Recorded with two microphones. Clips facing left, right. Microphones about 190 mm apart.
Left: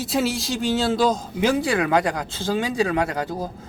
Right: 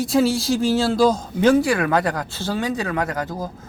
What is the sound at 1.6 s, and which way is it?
Speech, 20° left (ahead or behind).